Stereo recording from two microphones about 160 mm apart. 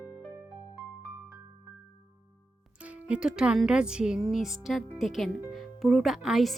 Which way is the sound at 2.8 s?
5° right (ahead or behind).